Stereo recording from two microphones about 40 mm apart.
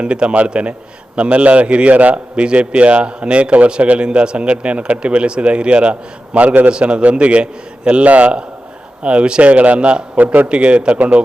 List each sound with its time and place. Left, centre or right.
0.0 s a man's voice: right
10.2 s speech: right
10.5 s a man's voice: right